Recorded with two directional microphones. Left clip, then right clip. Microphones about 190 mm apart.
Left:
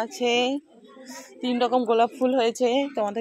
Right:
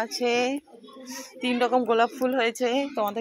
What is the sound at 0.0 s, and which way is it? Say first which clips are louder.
Speech: left 1 dB; 15° left (ahead or behind).